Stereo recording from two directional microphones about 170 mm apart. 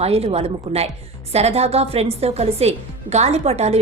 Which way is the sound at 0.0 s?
35° right (ahead or behind).